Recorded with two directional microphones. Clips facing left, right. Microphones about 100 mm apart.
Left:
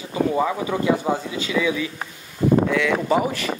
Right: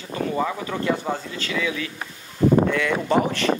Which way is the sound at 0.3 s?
15° left (ahead or behind).